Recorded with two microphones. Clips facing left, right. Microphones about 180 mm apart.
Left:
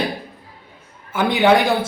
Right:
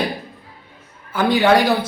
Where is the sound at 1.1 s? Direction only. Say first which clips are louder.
Right 2 dB; 20° left (ahead or behind).